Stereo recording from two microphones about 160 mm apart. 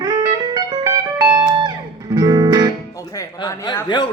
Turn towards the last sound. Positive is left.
turn(degrees=25)  # may be behind; listen again after turning